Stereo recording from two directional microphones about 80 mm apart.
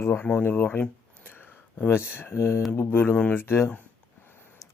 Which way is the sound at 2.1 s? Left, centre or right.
Left.